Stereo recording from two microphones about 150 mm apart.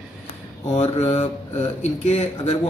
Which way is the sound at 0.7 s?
45° left (ahead or behind).